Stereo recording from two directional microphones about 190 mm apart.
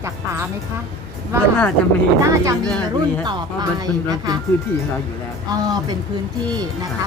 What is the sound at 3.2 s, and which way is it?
Speech, 20° right (ahead or behind).